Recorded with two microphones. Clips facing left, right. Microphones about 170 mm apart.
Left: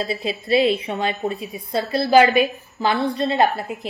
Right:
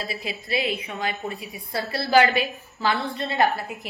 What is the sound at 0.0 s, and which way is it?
A woman's voice, 25° left (ahead or behind).